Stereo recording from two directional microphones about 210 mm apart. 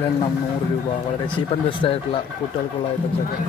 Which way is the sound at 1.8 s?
25° left (ahead or behind).